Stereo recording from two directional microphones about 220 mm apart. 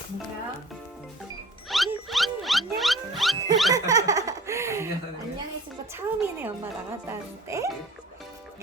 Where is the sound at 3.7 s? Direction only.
15° right (ahead or behind).